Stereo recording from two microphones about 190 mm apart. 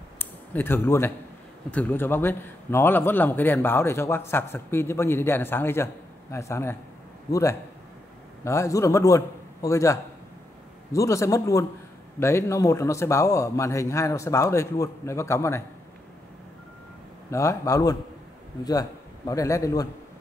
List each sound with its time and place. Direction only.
0.2 s a sound: 10° left (ahead or behind)
1.7 s a man's voice: 10° left (ahead or behind)
17.3 s a man's voice: 15° left (ahead or behind)